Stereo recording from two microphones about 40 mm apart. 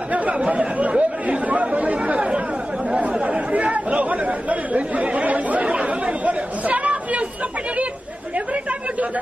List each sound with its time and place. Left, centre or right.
0.1 s chatter: right
6.2 s chatter: right